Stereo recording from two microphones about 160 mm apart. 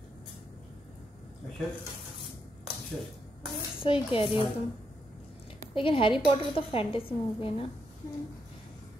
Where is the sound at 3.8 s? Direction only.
35° left (ahead or behind).